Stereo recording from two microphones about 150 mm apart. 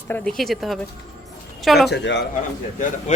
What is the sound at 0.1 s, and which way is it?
Speech, 10° left (ahead or behind).